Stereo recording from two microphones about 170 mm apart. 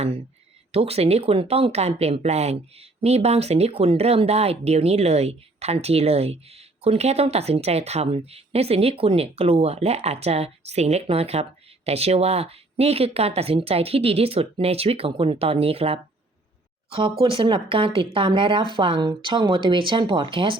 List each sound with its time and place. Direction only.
0.7 s speech: 35° right (ahead or behind)